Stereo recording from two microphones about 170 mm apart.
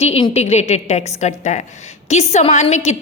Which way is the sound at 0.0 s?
35° left (ahead or behind).